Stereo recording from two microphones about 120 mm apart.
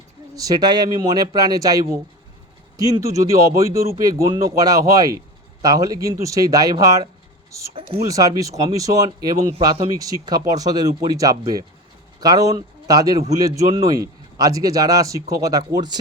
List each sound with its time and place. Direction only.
0.3 s speech: 30° right (ahead or behind)
7.7 s speech: 50° right (ahead or behind)
8.0 s speech: 30° right (ahead or behind)